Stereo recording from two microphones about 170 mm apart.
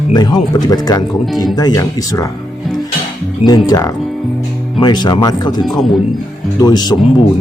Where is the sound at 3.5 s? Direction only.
20° left (ahead or behind).